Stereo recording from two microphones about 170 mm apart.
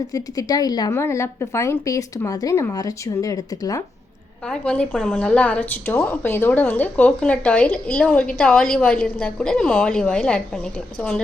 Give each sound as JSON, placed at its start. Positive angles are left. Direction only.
{"t": 0.1, "sound": "speech", "side_deg": 20}
{"t": 4.4, "sound": "a woman's voice", "side_deg": 5}